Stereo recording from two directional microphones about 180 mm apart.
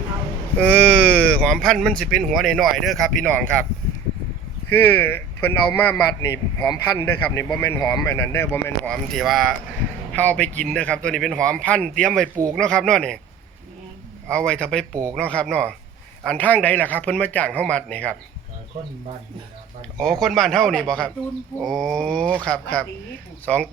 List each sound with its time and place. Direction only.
0.6 s speech: 5° left (ahead or behind)
4.7 s speech: 10° left (ahead or behind)
7.1 s speech: 10° left (ahead or behind)
14.3 s speech: 5° left (ahead or behind)
20.0 s speech: 5° left (ahead or behind)